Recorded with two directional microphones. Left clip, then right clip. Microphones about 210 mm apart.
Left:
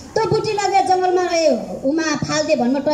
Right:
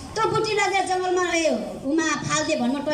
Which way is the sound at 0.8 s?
40° left (ahead or behind).